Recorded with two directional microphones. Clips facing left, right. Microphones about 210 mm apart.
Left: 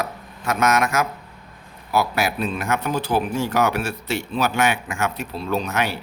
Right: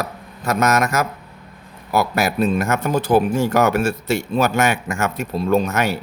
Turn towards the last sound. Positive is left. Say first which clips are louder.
# right 5 dB
turn(degrees=-45)  # may be behind; listen again after turning